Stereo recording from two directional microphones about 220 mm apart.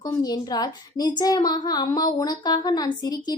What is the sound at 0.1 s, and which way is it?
A child's voice, 20° left (ahead or behind).